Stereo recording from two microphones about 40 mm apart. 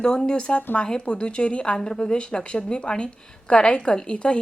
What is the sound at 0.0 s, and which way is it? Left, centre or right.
A woman's voice, left.